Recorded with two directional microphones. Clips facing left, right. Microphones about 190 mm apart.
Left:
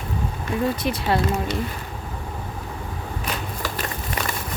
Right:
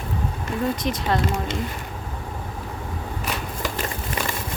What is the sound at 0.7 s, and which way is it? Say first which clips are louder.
Speech: left 1 dB; 10° left (ahead or behind).